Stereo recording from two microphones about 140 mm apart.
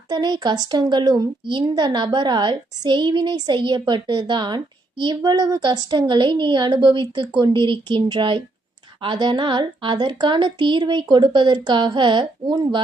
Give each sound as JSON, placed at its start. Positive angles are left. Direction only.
{"t": 0.1, "sound": "a woman's voice", "side_deg": -30}